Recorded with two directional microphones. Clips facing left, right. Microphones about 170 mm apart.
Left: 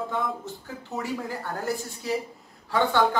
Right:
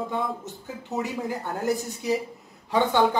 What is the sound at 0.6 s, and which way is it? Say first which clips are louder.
Speech: right 3 dB; 20° right (ahead or behind).